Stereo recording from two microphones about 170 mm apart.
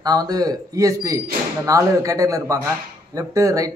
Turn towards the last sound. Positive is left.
turn(degrees=-20)  # may be behind; listen again after turning